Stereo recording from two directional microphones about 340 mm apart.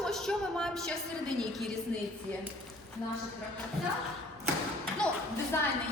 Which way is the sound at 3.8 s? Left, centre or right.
Centre.